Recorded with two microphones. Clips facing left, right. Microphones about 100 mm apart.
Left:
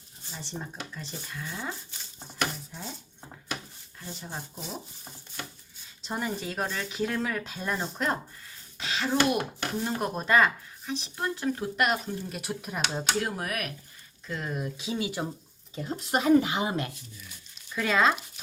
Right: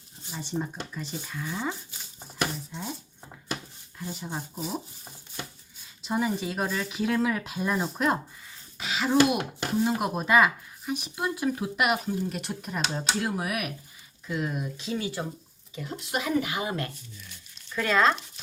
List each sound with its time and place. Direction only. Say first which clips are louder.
0.3 s speech: right 6 dB; 10° right (ahead or behind)
4.0 s speech: right 4 dB; 10° right (ahead or behind)
6.0 s speech: right 5 dB; 5° right (ahead or behind)
12.4 s speech: right 1 dB; 5° left (ahead or behind)
15.7 s speech: left 3 dB; 40° left (ahead or behind); by 16.9 s 20° left (ahead or behind)
17.2 s crumpling: even; 5° left (ahead or behind)